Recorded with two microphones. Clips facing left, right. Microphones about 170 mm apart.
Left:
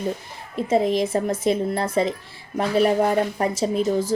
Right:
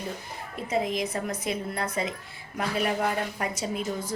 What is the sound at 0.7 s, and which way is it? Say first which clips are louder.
Speech: left 8 dB; 30° left (ahead or behind).